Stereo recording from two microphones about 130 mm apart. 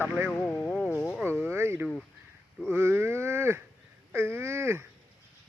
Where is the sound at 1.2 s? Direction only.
20° right (ahead or behind).